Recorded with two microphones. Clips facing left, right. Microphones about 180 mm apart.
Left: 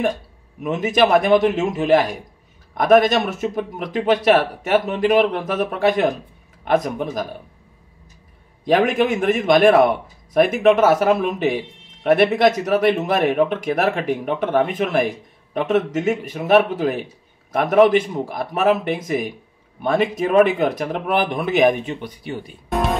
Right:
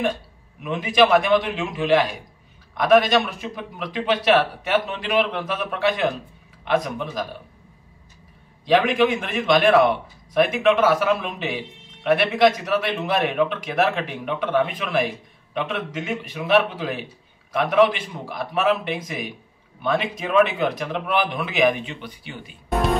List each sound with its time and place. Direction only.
0.6 s a man's voice: 45° left (ahead or behind)
8.6 s a man's voice: 50° left (ahead or behind)